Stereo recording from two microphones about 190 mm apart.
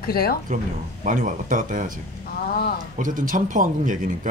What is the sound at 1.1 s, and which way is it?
Speech, 45° right (ahead or behind).